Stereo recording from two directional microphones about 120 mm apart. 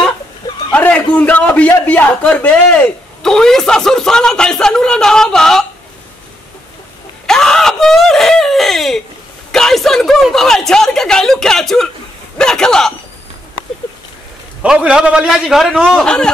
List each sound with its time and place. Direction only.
0.4 s chuckle: 30° left (ahead or behind)
0.7 s a man's voice: 10° left (ahead or behind)
7.2 s a sound: 5° left (ahead or behind)
9.5 s a woman's voice: 5° left (ahead or behind)
14.6 s a man's voice: 10° right (ahead or behind); by 16.3 s 5° left (ahead or behind)